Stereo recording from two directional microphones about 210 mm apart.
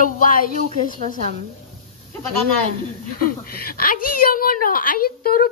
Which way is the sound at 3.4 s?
45° left (ahead or behind).